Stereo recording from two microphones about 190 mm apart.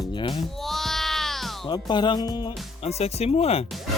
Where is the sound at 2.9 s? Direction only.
35° left (ahead or behind).